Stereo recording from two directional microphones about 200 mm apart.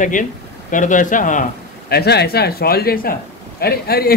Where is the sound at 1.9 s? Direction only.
55° left (ahead or behind).